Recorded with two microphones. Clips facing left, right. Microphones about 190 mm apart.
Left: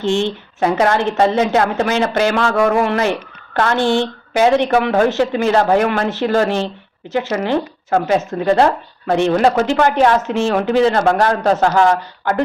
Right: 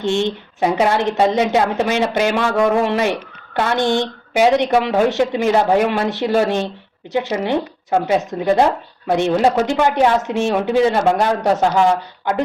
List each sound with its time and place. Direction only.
0.0 s speech: 15° right (ahead or behind)